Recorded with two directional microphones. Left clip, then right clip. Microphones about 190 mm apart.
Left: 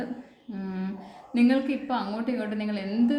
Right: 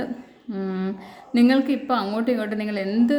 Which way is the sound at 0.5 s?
40° right (ahead or behind).